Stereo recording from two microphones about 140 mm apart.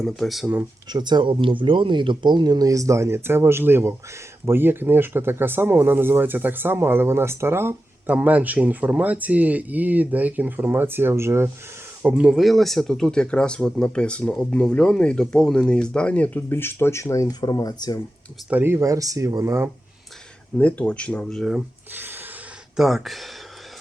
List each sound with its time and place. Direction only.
0.0 s speech: centre (ahead or behind)
0.9 s speech: 30° right (ahead or behind); by 18.0 s 25° left (ahead or behind)
18.5 s speech: 15° right (ahead or behind)
20.6 s speech: 10° left (ahead or behind)
21.9 s a sound: 15° right (ahead or behind)
22.8 s speech: centre (ahead or behind)